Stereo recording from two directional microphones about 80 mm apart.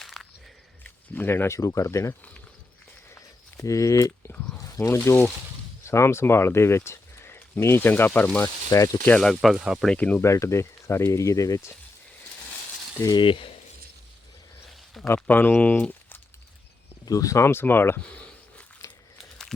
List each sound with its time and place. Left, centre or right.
0.0 s a sound: centre
0.9 s speech: left
3.1 s a sound: left
4.8 s speech: left
8.4 s speech: left
9.0 s speech: centre
9.3 s speech: centre
10.2 s speech: left
13.1 s speech: left
15.0 s speech: left
17.1 s speech: left
18.8 s crumpling: left